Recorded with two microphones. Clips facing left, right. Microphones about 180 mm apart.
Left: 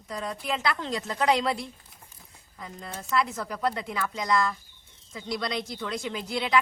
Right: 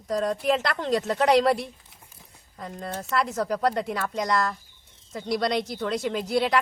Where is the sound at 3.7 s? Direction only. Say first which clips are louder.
Right 5 dB; 60° right (ahead or behind).